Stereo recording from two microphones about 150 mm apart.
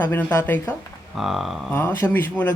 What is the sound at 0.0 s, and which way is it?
Speech, 15° left (ahead or behind).